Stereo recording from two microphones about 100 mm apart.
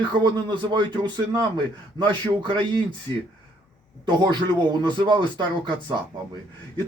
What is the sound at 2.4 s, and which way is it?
Speech, 50° right (ahead or behind).